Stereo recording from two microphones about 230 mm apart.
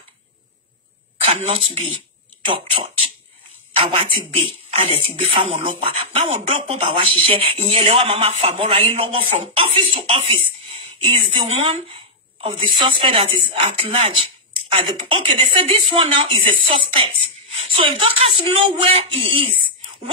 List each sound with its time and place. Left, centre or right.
1.2 s speech: right
3.7 s a sound: right
4.5 s speech: right